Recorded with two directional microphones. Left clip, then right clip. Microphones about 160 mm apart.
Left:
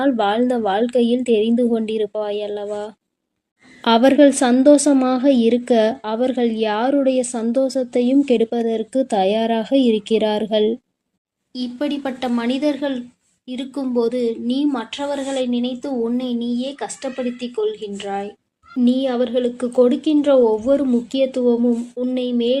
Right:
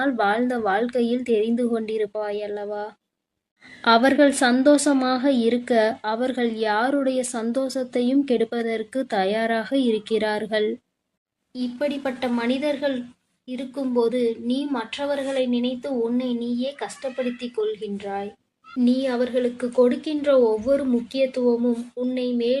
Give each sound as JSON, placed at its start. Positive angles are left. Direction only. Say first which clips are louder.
{"t": 0.0, "sound": "a woman's voice", "louder": "left 4 dB", "side_deg": 15}